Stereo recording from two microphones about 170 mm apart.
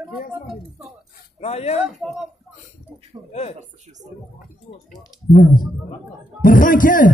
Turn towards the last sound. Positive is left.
turn(degrees=50)  # may be behind; listen again after turning